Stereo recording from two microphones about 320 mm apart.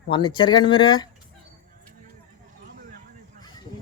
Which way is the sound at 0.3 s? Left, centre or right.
Centre.